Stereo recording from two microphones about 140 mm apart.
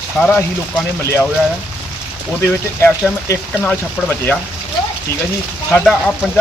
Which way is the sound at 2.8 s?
15° left (ahead or behind).